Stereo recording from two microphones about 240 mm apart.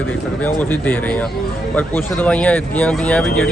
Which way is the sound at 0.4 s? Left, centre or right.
Centre.